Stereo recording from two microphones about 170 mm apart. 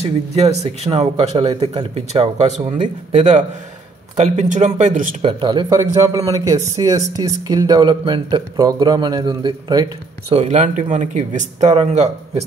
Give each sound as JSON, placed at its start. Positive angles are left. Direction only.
{"t": 0.4, "sound": "speech", "side_deg": -40}
{"t": 5.2, "sound": "speech", "side_deg": -25}
{"t": 10.3, "sound": "speech", "side_deg": -40}